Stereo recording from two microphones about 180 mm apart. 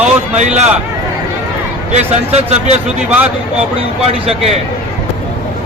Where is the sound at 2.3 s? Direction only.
35° right (ahead or behind).